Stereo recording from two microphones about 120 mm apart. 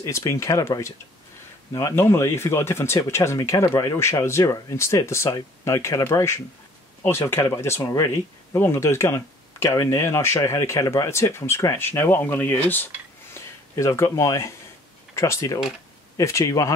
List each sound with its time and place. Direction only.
0.0 s speech: 25° left (ahead or behind)
8.5 s speech: 20° left (ahead or behind)